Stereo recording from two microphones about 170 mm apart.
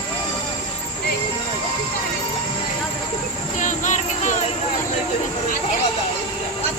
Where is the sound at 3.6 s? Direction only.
45° left (ahead or behind).